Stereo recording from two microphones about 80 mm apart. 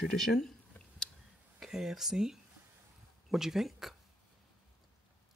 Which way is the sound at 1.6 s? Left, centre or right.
Centre.